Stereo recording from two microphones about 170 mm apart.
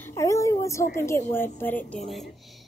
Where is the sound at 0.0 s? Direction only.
15° left (ahead or behind).